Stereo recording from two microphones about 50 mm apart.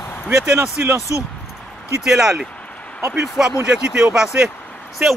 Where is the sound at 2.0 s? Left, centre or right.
Centre.